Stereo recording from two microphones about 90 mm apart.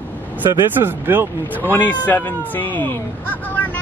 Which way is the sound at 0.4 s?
40° right (ahead or behind).